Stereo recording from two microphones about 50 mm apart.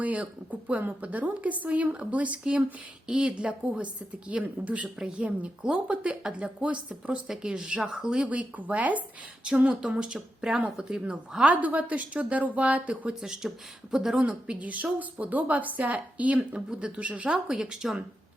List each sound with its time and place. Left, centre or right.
0.0 s a woman's voice: right
2.4 s a woman's voice: centre
7.3 s a woman's voice: centre
8.4 s a woman's voice: right
9.4 s a woman's voice: centre
11.6 s a woman's voice: right
13.2 s a woman's voice: centre
14.2 s a woman's voice: right
17.3 s a woman's voice: centre